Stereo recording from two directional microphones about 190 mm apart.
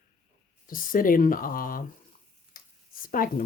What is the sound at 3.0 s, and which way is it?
Speech, 50° left (ahead or behind).